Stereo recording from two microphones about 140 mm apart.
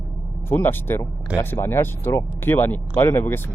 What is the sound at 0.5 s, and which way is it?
Speech, 15° left (ahead or behind).